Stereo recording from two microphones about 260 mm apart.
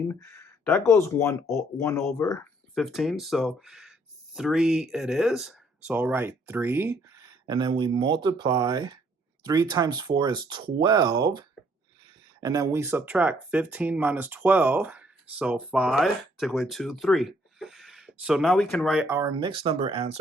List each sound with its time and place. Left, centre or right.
0.1 s speech: centre
2.7 s speech: centre; by 20.1 s right